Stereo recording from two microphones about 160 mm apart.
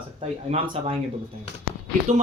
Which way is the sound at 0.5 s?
35° right (ahead or behind).